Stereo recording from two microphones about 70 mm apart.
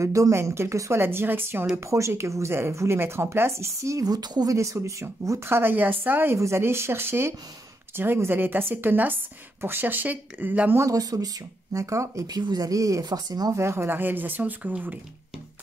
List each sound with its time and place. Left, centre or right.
0.0 s speech: right
1.9 s speech: right
4.0 s speech: right
4.5 s speech: right
5.5 s speech: right
6.3 s speech: right
10.9 s speech: right
11.7 s speech: right
12.3 s speech: right
13.6 s speech: right